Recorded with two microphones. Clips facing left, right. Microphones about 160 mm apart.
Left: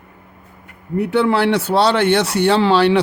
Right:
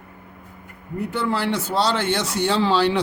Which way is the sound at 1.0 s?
70° left (ahead or behind).